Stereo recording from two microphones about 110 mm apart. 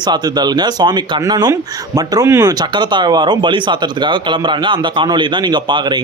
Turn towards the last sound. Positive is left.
turn(degrees=-45)  # may be behind; listen again after turning